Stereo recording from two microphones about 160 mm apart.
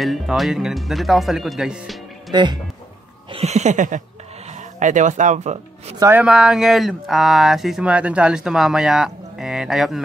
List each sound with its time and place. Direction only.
0.0 s speech: centre (ahead or behind)
2.3 s speech: 30° right (ahead or behind)
3.3 s a sound: 40° right (ahead or behind)
5.9 s speech: 15° right (ahead or behind)
6.2 s speech: 5° right (ahead or behind)